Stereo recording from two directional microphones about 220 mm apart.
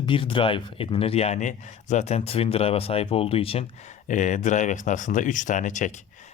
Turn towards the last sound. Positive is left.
turn(degrees=35)  # may be behind; listen again after turning